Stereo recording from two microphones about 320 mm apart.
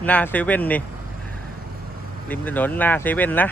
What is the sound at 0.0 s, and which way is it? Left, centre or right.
Speech, centre.